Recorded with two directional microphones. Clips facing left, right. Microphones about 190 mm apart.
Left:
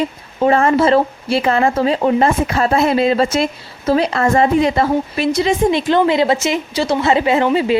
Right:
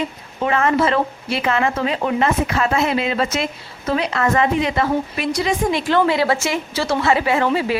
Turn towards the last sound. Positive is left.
turn(degrees=20)  # may be behind; listen again after turning